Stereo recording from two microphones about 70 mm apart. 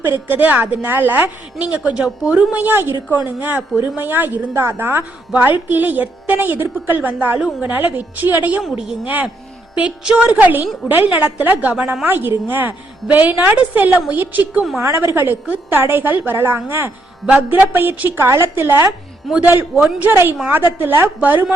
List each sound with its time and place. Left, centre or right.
0.0 s a woman's voice: right
1.6 s a woman's voice: centre
12.0 s a woman's voice: right
14.8 s a woman's voice: right
17.2 s speech: centre
17.7 s a woman's voice: right
20.5 s a woman's voice: right